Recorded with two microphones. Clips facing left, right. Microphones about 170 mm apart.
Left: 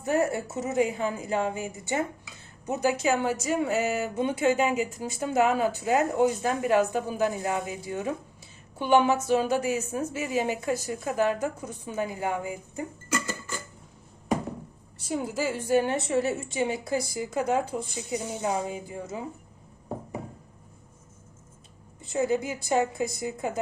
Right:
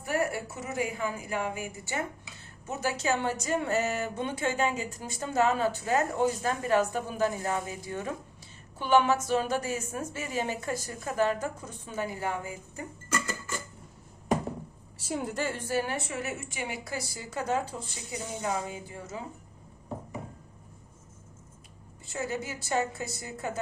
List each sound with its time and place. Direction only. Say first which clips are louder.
0.0 s a woman's voice: left 4 dB; 25° left (ahead or behind)
14.9 s speech: left 3 dB; centre (ahead or behind)
18.1 s a woman's voice: left 3 dB; 25° left (ahead or behind)
22.0 s speech: left 8 dB; 20° left (ahead or behind)